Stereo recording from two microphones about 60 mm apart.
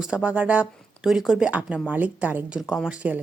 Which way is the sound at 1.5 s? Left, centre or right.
Right.